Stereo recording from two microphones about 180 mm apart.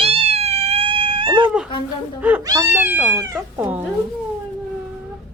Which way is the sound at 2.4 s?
15° right (ahead or behind).